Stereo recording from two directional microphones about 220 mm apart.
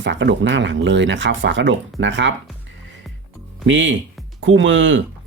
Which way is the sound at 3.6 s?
60° right (ahead or behind).